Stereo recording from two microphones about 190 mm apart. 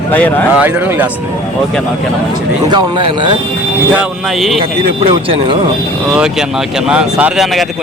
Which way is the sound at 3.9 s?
Centre (ahead or behind).